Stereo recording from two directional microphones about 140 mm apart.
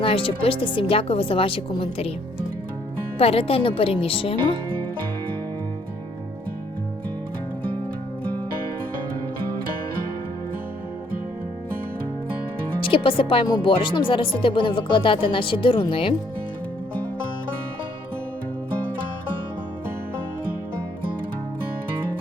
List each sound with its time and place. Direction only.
0.0 s speech: 40° left (ahead or behind)
3.2 s speech: 45° left (ahead or behind)
12.9 s speech: 40° left (ahead or behind)